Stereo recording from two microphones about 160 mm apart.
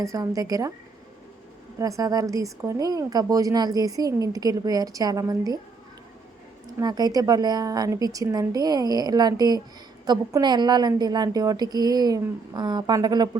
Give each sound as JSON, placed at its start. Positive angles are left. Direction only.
{"t": 0.0, "sound": "a woman's voice", "side_deg": -20}
{"t": 1.8, "sound": "a woman's voice", "side_deg": -25}
{"t": 6.7, "sound": "a woman's voice", "side_deg": -25}